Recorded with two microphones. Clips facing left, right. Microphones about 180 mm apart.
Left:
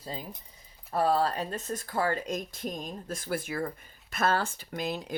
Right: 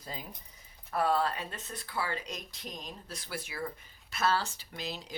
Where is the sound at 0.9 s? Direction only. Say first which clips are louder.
Left 3 dB; 35° left (ahead or behind).